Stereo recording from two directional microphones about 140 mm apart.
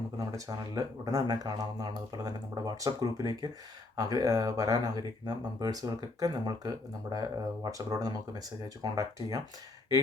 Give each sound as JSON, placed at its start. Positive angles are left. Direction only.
{"t": 0.2, "sound": "speech", "side_deg": -25}